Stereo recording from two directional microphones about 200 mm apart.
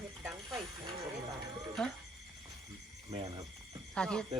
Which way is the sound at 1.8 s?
5° left (ahead or behind).